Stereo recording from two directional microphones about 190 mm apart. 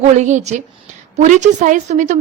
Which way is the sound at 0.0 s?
40° right (ahead or behind).